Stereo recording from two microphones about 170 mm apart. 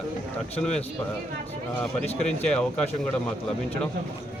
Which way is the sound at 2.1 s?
40° left (ahead or behind).